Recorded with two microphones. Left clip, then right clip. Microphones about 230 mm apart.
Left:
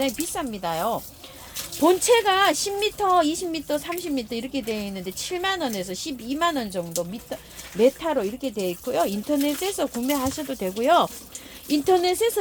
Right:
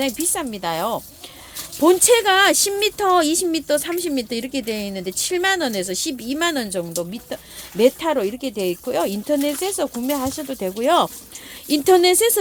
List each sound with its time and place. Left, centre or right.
0.0 s speech: right
11.7 s speech: right